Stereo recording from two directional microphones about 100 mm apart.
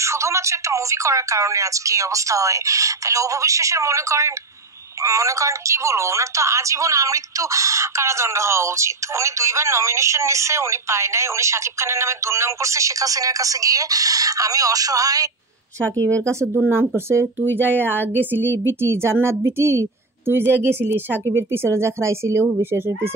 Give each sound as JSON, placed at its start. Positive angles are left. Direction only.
{"t": 0.0, "sound": "a woman's voice", "side_deg": -30}
{"t": 17.7, "sound": "a woman's voice", "side_deg": 15}
{"t": 18.3, "sound": "a woman's voice", "side_deg": -20}